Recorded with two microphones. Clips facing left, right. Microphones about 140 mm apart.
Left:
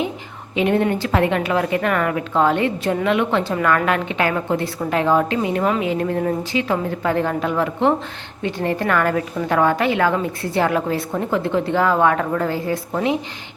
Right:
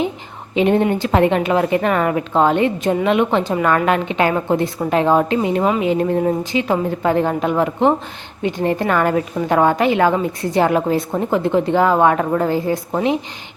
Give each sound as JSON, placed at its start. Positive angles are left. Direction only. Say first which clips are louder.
{"t": 0.5, "sound": "speech", "louder": "right 3 dB", "side_deg": -25}